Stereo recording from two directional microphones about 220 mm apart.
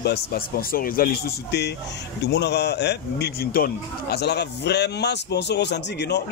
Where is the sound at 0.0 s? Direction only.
45° left (ahead or behind).